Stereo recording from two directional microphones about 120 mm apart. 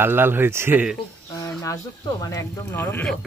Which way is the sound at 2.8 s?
15° left (ahead or behind).